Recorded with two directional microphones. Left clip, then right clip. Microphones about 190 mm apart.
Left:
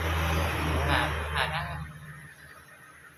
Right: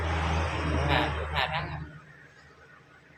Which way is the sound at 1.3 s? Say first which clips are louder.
Right 1 dB; 60° right (ahead or behind).